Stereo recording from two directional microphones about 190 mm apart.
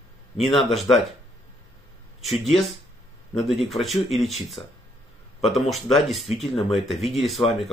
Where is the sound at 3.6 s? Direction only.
Centre (ahead or behind).